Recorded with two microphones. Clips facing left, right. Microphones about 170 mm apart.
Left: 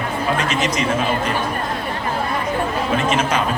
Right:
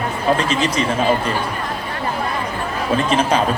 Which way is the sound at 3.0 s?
35° right (ahead or behind).